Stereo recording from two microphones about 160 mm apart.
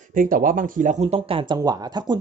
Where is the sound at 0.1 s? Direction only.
60° right (ahead or behind).